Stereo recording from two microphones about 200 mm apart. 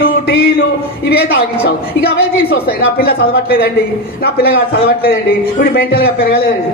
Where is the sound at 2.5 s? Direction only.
50° left (ahead or behind).